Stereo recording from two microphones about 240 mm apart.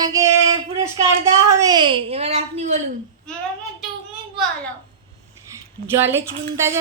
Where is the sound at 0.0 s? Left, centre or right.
Centre.